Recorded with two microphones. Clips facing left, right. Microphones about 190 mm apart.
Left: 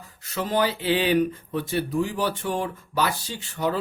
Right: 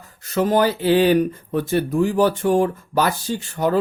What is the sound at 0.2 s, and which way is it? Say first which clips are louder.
Speech: right 7 dB; 45° right (ahead or behind).